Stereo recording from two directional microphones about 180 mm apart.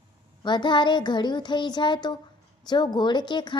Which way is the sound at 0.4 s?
25° left (ahead or behind).